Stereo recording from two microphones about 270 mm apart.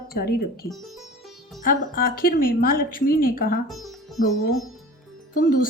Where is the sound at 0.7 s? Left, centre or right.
Centre.